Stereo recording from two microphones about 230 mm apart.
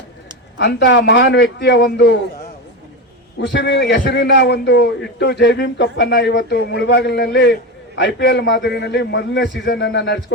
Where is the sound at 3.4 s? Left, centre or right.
Left.